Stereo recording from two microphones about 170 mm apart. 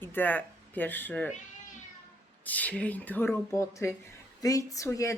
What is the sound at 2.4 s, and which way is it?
Speech, 10° left (ahead or behind).